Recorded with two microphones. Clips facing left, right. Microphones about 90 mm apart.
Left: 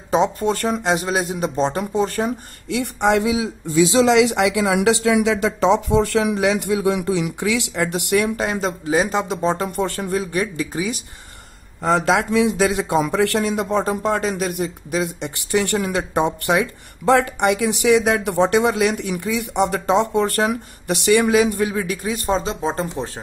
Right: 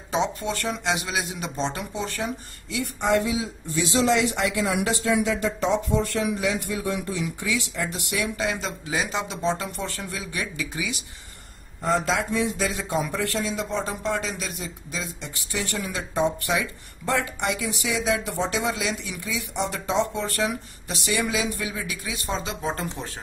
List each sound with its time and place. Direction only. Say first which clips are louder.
0.1 s speech: left 7 dB; 40° left (ahead or behind)
2.7 s speech: left 5 dB; 80° left; by 11.0 s 40° left (ahead or behind)
11.8 s speech: left 6 dB; 75° left (ahead or behind); by 23.0 s 25° left (ahead or behind)